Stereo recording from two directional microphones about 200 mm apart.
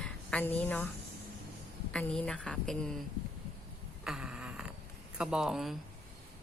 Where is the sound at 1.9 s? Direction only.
5° left (ahead or behind).